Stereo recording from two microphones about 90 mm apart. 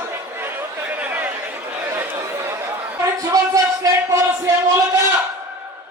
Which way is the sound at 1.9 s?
25° right (ahead or behind).